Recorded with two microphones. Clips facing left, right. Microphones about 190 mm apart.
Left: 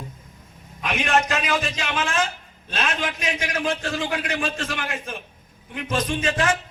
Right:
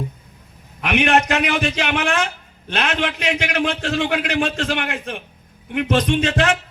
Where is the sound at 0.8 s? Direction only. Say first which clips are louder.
Right 5 dB; 70° right (ahead or behind).